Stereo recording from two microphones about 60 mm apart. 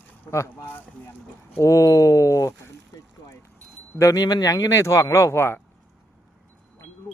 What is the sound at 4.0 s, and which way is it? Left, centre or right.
Speech, left.